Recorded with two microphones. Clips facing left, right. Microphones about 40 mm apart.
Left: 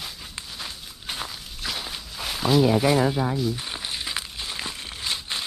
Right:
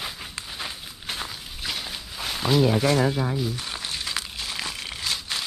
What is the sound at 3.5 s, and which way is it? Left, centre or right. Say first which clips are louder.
Crumpling: even; centre.